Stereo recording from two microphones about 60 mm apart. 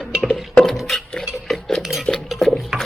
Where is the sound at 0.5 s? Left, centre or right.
Centre.